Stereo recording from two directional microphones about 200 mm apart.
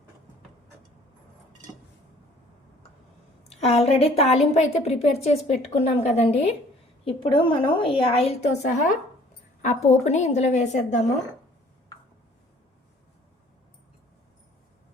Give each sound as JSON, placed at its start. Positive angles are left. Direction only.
{"t": 3.5, "sound": "a woman's voice", "side_deg": 30}